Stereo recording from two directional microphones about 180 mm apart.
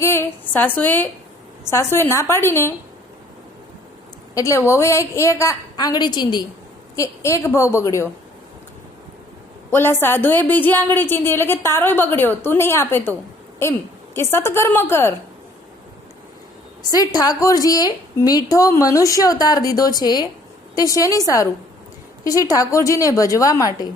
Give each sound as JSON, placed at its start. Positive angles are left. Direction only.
{"t": 0.0, "sound": "a woman's voice", "side_deg": 15}
{"t": 4.4, "sound": "a woman's voice", "side_deg": 15}
{"t": 9.7, "sound": "a woman's voice", "side_deg": 15}
{"t": 14.2, "sound": "a woman's voice", "side_deg": 15}
{"t": 16.9, "sound": "a woman's voice", "side_deg": 20}